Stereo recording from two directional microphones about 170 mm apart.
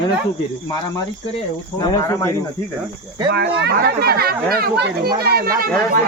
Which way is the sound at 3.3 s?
75° right (ahead or behind).